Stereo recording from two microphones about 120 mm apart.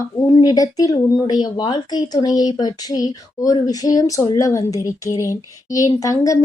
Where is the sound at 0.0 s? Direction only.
30° left (ahead or behind).